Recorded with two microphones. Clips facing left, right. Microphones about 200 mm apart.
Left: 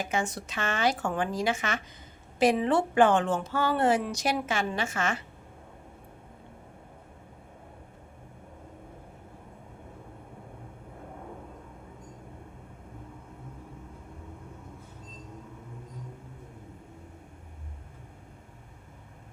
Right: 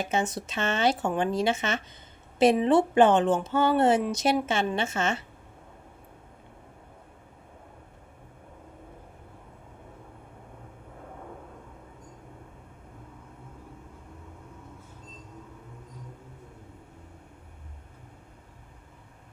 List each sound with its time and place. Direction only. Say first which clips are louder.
0.0 s a woman's voice: right 3 dB; 25° right (ahead or behind)